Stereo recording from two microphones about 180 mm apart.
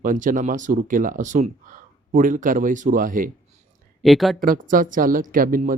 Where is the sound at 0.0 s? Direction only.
45° right (ahead or behind).